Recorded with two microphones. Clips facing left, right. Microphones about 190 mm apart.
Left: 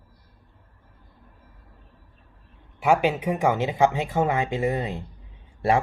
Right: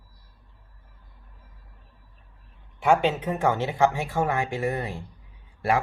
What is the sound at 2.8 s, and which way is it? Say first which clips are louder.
Speech: even; 10° left (ahead or behind).